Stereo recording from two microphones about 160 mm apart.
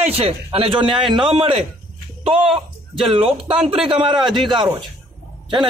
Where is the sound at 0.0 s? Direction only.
40° right (ahead or behind).